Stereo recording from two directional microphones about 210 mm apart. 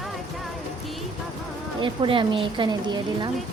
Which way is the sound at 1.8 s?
25° right (ahead or behind).